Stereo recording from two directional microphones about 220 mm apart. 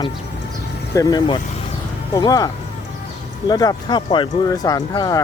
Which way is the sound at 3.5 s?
20° left (ahead or behind).